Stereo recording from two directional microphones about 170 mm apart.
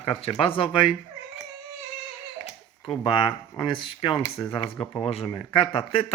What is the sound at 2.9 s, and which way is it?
A man's voice, 30° left (ahead or behind).